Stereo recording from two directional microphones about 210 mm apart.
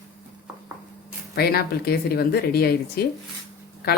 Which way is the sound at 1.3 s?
45° left (ahead or behind).